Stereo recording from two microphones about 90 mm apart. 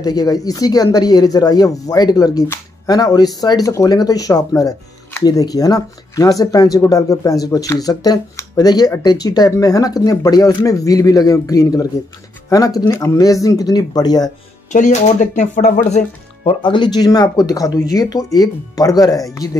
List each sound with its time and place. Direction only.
0.0 s speech: 45° left (ahead or behind)
16.4 s speech: 65° left (ahead or behind); by 19.5 s 40° left (ahead or behind)